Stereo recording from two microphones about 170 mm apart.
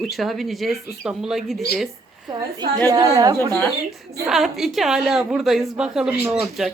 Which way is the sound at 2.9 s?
20° right (ahead or behind).